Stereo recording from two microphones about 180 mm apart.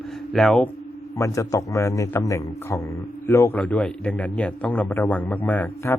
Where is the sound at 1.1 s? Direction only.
15° left (ahead or behind).